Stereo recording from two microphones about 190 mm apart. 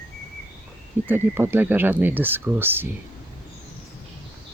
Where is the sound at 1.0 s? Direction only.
10° right (ahead or behind).